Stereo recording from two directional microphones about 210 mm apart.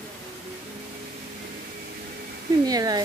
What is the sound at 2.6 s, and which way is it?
Speech, 20° right (ahead or behind).